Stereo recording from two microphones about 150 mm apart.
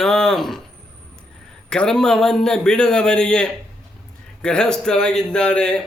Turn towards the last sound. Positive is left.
turn(degrees=5)  # may be behind; listen again after turning